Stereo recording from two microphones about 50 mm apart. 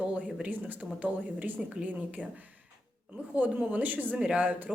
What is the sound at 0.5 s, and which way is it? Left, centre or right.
Speech, right.